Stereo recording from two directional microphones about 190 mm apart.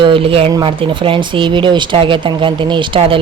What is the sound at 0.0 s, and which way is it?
Speech, 30° right (ahead or behind).